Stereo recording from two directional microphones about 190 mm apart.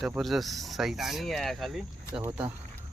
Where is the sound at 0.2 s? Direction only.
Centre (ahead or behind).